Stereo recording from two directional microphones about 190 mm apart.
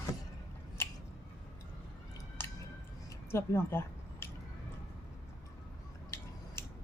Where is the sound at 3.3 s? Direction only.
10° left (ahead or behind).